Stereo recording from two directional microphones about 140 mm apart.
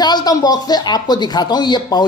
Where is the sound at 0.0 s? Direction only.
30° left (ahead or behind).